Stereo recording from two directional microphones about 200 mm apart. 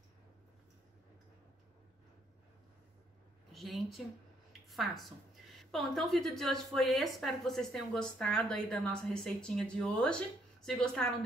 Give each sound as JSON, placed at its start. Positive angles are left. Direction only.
{"t": 3.5, "sound": "a woman's voice", "side_deg": 0}
{"t": 4.5, "sound": "a sound", "side_deg": 0}
{"t": 5.6, "sound": "a woman's voice", "side_deg": 0}